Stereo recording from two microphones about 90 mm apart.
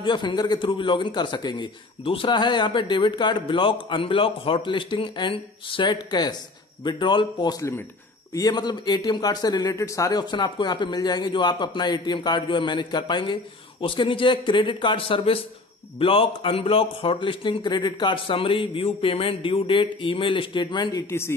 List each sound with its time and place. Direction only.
0.0 s a man's voice: 60° left (ahead or behind)
0.7 s a man's voice: 70° left (ahead or behind)
8.3 s speech: 40° left (ahead or behind)
8.5 s a man's voice: 55° left (ahead or behind); by 10.1 s 35° left (ahead or behind)
10.1 s a man's voice: 55° left (ahead or behind)
21.1 s speech: 25° left (ahead or behind)